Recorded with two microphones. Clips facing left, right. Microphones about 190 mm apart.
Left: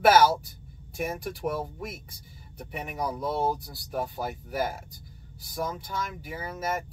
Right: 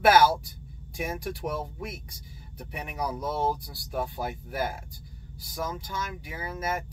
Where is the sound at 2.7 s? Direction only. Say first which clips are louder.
Left 1 dB; centre (ahead or behind).